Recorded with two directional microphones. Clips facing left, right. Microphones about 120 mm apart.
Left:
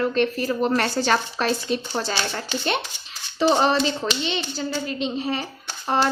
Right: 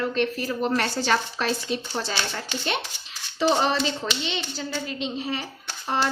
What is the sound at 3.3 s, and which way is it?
Speech, 35° left (ahead or behind).